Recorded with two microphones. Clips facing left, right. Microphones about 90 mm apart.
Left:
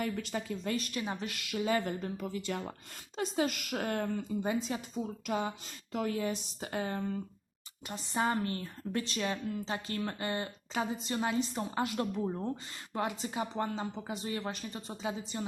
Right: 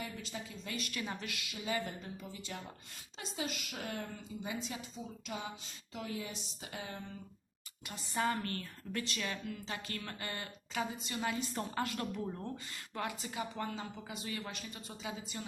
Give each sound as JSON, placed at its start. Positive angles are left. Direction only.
{"t": 0.0, "sound": "speech", "side_deg": 60}
{"t": 0.9, "sound": "speech", "side_deg": 30}
{"t": 1.4, "sound": "speech", "side_deg": 55}
{"t": 3.2, "sound": "a woman's voice", "side_deg": 50}
{"t": 5.2, "sound": "a woman's voice", "side_deg": 55}
{"t": 7.9, "sound": "a woman's voice", "side_deg": 30}
{"t": 11.3, "sound": "a woman's voice", "side_deg": 20}
{"t": 12.1, "sound": "speech", "side_deg": 30}